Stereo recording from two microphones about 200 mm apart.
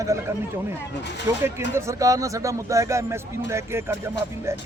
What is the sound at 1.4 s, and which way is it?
Speech, 10° right (ahead or behind).